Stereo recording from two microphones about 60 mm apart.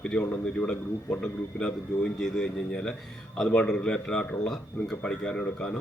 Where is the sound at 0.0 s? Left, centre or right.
Centre.